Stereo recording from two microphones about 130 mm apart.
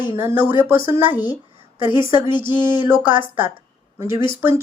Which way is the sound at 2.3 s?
15° right (ahead or behind).